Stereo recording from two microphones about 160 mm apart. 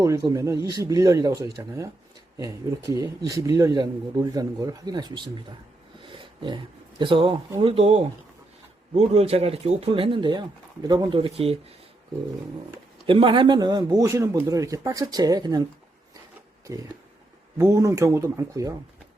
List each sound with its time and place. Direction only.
0.0 s speech: 20° right (ahead or behind)
6.0 s a sound: 30° right (ahead or behind)
7.0 s speech: 30° right (ahead or behind)
13.1 s speech: 35° right (ahead or behind)
16.7 s speech: 20° right (ahead or behind)